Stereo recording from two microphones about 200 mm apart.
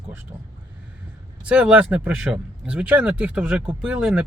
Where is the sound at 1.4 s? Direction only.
5° right (ahead or behind).